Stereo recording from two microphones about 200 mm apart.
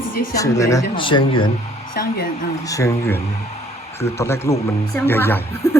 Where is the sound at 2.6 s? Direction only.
15° left (ahead or behind).